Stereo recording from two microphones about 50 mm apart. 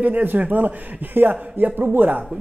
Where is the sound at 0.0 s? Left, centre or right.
Right.